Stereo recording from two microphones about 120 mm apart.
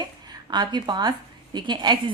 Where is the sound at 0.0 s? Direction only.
35° right (ahead or behind).